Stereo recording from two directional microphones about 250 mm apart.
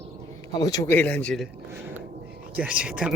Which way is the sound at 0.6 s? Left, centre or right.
Centre.